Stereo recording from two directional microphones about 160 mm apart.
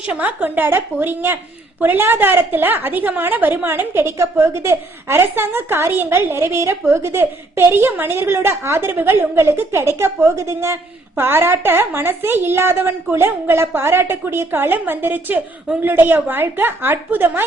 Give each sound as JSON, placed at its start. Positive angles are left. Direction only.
{"t": 0.0, "sound": "a woman's voice", "side_deg": -10}